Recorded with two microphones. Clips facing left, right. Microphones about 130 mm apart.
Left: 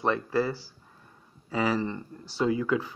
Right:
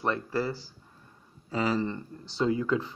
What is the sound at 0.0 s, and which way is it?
Speech, 10° left (ahead or behind).